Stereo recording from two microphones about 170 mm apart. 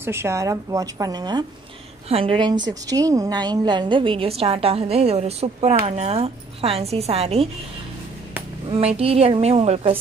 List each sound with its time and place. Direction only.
0.0 s a woman's voice: 15° right (ahead or behind)
2.0 s a woman's voice: 35° right (ahead or behind)
8.6 s a woman's voice: 35° right (ahead or behind)